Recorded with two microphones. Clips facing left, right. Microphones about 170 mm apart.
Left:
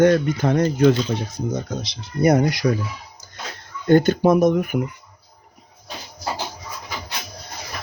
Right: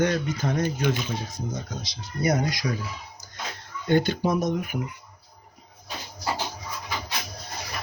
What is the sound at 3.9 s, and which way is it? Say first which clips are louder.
Speech: left 8 dB; 50° left (ahead or behind).